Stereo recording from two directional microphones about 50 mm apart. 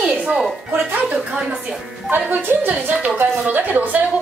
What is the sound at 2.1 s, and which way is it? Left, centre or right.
A child's voice, right.